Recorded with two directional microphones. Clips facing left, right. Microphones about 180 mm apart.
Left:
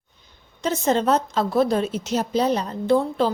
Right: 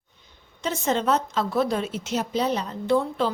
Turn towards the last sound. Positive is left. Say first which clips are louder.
# left 3 dB
turn(degrees=35)  # may be behind; listen again after turning